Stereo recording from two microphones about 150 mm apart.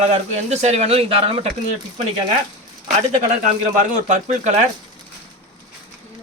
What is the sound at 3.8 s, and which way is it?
Speech, 55° right (ahead or behind).